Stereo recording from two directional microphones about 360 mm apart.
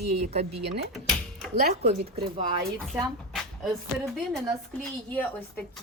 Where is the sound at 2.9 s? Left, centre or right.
Centre.